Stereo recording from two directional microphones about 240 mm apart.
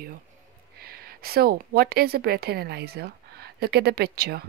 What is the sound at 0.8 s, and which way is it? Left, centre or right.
A woman's voice, right.